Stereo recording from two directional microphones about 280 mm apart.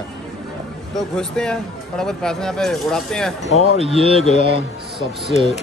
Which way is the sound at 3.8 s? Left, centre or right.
Centre.